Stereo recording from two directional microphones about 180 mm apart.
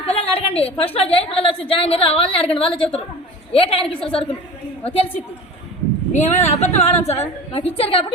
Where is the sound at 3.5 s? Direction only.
30° left (ahead or behind).